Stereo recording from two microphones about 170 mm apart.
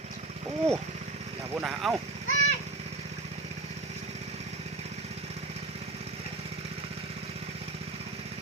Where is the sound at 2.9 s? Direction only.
40° right (ahead or behind).